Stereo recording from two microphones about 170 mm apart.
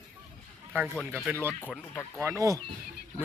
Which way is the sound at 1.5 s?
10° left (ahead or behind).